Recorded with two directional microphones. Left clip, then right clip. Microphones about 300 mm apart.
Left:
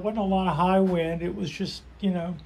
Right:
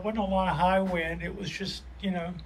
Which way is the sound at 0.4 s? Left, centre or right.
Centre.